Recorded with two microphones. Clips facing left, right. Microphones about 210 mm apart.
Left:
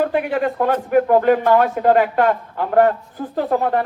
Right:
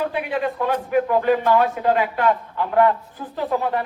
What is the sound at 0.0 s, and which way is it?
A man's voice, 50° left (ahead or behind).